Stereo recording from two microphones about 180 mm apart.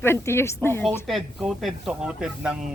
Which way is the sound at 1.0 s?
Centre (ahead or behind).